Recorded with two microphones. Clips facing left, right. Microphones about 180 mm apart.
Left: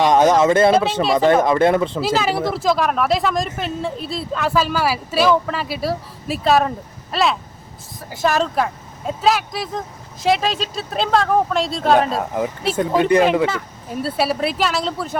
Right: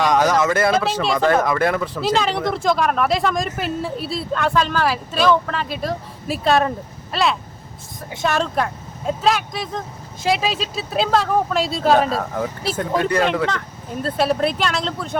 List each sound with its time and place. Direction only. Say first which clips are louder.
0.0 s a man's voice: left 3 dB; 25° left (ahead or behind)
2.0 s speech: left 1 dB; 5° left (ahead or behind)
12.7 s a man's voice: left 5 dB; 15° left (ahead or behind)
14.0 s speech: right 1 dB; 5° left (ahead or behind)